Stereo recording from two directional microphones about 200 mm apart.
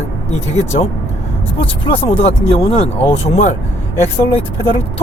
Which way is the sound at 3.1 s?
35° left (ahead or behind).